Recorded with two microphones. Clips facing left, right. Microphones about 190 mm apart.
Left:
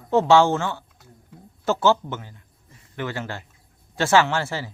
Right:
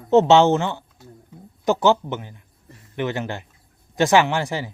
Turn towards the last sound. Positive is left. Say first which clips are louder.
# right 1 dB
turn(degrees=-15)  # may be behind; listen again after turning